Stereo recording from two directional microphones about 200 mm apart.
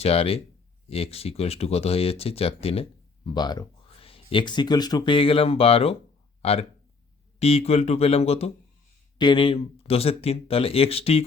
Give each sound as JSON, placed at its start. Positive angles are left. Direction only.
{"t": 0.0, "sound": "speech", "side_deg": 30}